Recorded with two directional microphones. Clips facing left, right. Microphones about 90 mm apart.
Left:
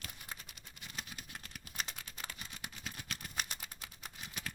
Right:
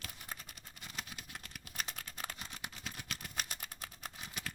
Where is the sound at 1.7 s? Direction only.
45° right (ahead or behind).